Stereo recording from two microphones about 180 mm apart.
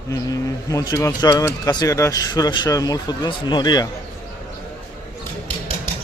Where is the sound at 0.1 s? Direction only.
20° left (ahead or behind).